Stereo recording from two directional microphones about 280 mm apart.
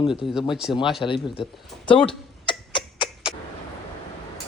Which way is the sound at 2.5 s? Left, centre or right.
Centre.